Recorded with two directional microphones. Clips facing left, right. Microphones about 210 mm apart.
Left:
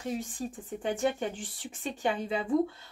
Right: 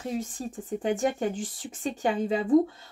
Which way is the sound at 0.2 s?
40° right (ahead or behind).